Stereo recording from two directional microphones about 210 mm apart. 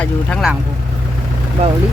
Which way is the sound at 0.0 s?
5° left (ahead or behind).